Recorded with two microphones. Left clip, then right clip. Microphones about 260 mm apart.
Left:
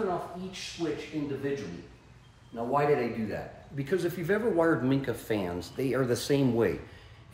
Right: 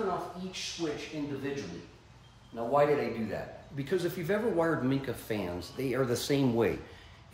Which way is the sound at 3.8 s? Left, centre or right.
Centre.